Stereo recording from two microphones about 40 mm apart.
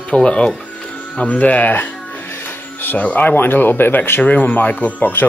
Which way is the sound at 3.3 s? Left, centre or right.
Left.